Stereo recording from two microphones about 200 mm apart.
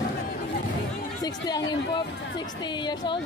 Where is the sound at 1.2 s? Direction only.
20° left (ahead or behind).